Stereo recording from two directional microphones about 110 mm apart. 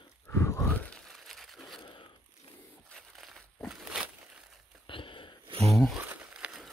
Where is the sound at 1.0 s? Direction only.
Centre (ahead or behind).